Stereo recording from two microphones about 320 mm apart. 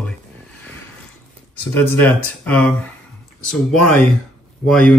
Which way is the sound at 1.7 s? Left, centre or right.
Centre.